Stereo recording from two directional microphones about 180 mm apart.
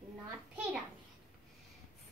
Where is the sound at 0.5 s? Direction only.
5° right (ahead or behind).